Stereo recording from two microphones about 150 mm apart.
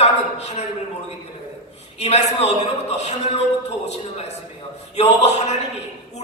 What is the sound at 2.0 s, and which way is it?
A man's voice, 45° left (ahead or behind).